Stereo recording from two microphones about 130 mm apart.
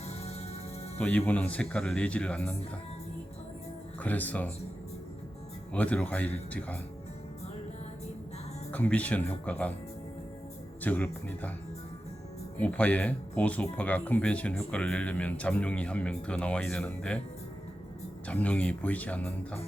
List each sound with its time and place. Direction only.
0.1 s music: 55° left (ahead or behind)
0.9 s speech: 10° left (ahead or behind)
4.0 s speech: 15° left (ahead or behind)
5.7 s speech: 10° left (ahead or behind)
8.7 s speech: 10° left (ahead or behind)
10.8 s speech: 15° left (ahead or behind)
12.5 s speech: 10° left (ahead or behind)
18.3 s speech: 10° left (ahead or behind)